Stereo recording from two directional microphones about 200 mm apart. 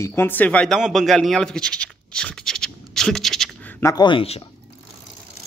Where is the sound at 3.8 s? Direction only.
20° left (ahead or behind).